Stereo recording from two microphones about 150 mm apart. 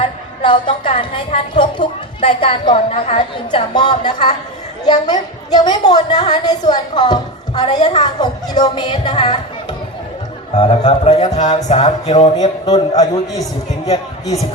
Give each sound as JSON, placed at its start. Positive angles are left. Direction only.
{"t": 0.0, "sound": "a woman's voice", "side_deg": 35}
{"t": 10.6, "sound": "a woman's voice", "side_deg": 35}
{"t": 11.3, "sound": "music", "side_deg": 50}
{"t": 13.0, "sound": "a woman's voice", "side_deg": 25}